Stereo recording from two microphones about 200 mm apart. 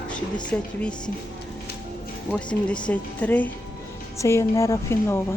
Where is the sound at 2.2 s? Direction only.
5° left (ahead or behind).